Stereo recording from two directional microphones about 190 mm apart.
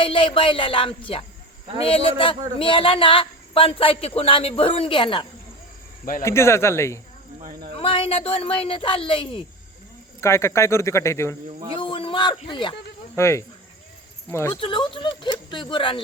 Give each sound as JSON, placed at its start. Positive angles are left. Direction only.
{"t": 0.0, "sound": "speech", "side_deg": 25}
{"t": 6.2, "sound": "speech", "side_deg": 15}
{"t": 7.8, "sound": "speech", "side_deg": 30}
{"t": 10.2, "sound": "speech", "side_deg": 15}
{"t": 11.8, "sound": "speech", "side_deg": 25}
{"t": 13.1, "sound": "speech", "side_deg": 15}
{"t": 14.6, "sound": "speech", "side_deg": 25}